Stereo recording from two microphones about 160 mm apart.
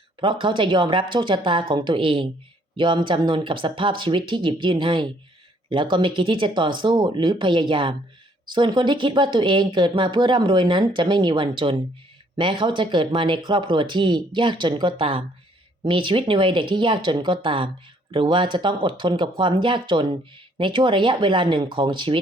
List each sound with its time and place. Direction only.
0.2 s speech: 30° right (ahead or behind)